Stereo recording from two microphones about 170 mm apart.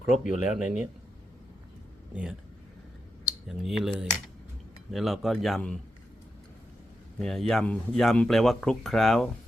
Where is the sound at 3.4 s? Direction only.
Centre (ahead or behind).